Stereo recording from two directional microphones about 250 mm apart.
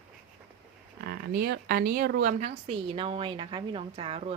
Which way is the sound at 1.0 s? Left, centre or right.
Right.